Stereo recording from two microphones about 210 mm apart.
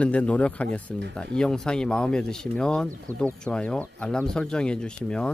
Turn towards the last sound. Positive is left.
turn(degrees=5)  # may be behind; listen again after turning